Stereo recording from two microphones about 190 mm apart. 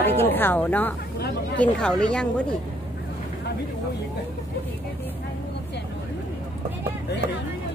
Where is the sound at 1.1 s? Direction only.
60° left (ahead or behind).